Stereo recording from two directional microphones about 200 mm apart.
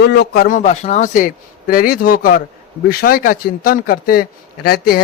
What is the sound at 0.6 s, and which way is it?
A man's voice, 35° left (ahead or behind).